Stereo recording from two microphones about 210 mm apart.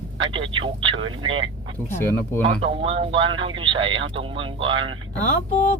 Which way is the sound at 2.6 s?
25° right (ahead or behind).